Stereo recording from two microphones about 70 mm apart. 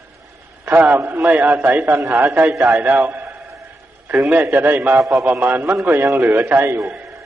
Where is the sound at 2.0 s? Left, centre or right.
Right.